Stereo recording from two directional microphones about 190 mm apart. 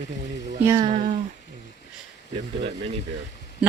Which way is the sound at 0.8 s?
30° right (ahead or behind).